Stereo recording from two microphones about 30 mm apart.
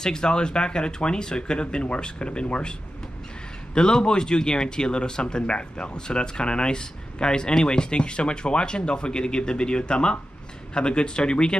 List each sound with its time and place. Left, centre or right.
0.0 s speech: left
3.7 s speech: left